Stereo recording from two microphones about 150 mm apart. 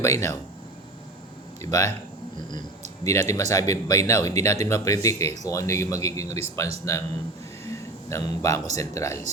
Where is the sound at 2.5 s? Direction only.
25° left (ahead or behind).